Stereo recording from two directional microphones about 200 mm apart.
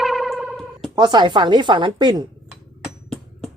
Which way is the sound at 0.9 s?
20° right (ahead or behind).